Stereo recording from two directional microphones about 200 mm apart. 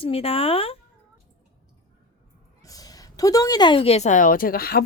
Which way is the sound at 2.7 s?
20° left (ahead or behind).